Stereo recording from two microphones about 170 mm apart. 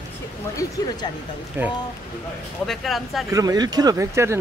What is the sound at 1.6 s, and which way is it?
Speech, 10° right (ahead or behind).